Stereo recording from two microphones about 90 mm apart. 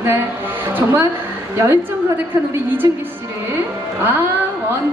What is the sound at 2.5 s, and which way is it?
Speech, 20° right (ahead or behind).